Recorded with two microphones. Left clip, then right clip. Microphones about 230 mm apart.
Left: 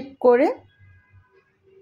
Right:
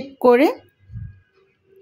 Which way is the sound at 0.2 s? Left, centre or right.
Right.